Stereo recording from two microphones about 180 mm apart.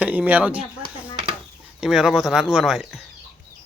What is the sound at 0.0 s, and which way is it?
Speech, 10° right (ahead or behind).